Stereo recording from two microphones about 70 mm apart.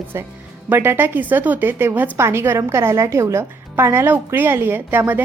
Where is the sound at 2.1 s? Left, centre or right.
Right.